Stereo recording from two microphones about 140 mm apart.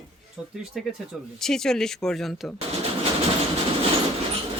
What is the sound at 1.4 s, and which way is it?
A woman's voice, 5° left (ahead or behind).